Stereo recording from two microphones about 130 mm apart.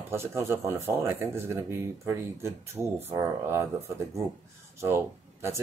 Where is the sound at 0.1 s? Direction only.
20° right (ahead or behind).